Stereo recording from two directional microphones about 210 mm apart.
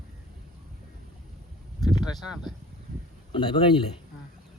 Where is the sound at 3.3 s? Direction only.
25° left (ahead or behind).